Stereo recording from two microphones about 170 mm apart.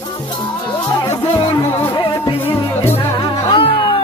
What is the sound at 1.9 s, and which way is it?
Music, 30° left (ahead or behind).